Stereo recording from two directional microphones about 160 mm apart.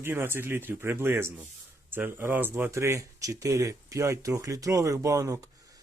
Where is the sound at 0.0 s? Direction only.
15° right (ahead or behind).